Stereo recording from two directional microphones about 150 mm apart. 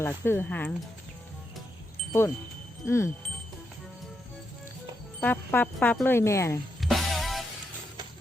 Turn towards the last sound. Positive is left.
turn(degrees=0)  # may be behind; listen again after turning